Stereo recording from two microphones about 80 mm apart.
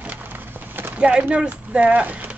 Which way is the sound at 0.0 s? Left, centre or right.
Right.